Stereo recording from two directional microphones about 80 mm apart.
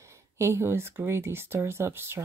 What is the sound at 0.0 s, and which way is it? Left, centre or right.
Speech, right.